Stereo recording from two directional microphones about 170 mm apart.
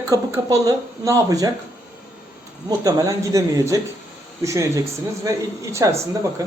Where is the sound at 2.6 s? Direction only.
20° right (ahead or behind).